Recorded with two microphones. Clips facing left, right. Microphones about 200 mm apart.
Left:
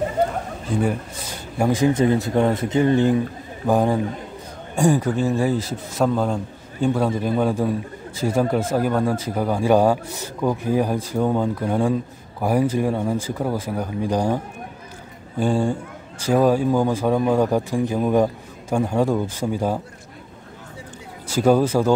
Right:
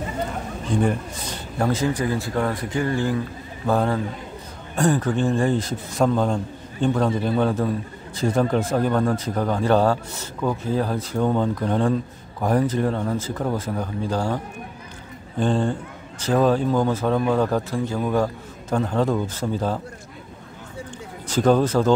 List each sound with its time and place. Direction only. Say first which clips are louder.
0.7 s a man's voice: right 1 dB; 5° left (ahead or behind)
21.3 s a man's voice: left 1 dB; 10° left (ahead or behind)